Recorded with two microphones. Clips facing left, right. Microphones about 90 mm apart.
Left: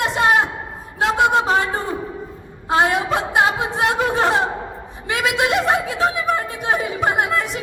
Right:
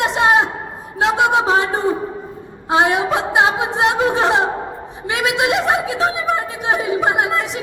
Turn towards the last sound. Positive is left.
turn(degrees=-20)  # may be behind; listen again after turning